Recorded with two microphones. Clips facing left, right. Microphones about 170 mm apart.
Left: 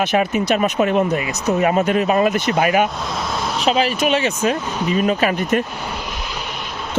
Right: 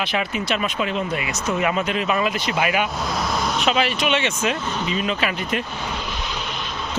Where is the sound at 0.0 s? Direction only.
45° left (ahead or behind).